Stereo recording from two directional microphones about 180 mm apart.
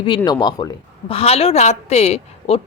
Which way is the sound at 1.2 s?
35° left (ahead or behind).